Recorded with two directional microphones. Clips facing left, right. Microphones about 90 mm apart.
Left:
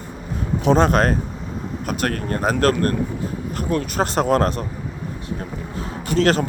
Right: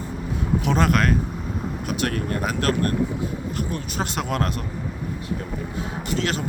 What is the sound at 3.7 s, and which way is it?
Speech, 55° left (ahead or behind).